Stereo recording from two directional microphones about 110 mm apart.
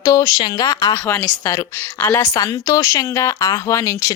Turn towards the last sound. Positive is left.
turn(degrees=30)  # may be behind; listen again after turning